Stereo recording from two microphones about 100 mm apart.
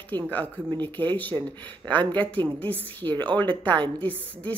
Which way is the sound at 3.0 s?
45° right (ahead or behind).